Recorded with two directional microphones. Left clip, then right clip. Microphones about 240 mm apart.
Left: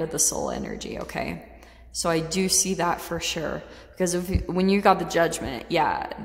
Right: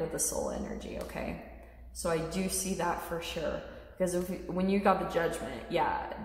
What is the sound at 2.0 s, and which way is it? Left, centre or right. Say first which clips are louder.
A woman's voice: left 8 dB; left.